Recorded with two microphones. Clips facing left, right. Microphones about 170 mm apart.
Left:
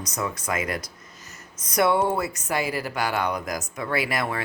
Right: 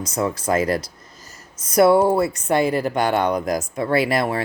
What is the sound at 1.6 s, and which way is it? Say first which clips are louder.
Speech: right 7 dB; 30° right (ahead or behind).